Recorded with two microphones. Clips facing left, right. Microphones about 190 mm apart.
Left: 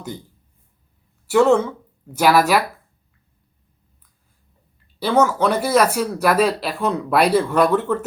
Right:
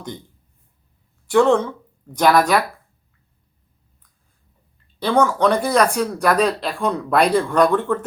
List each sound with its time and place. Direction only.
1.3 s speech: 5° left (ahead or behind)
4.9 s speech: 5° left (ahead or behind)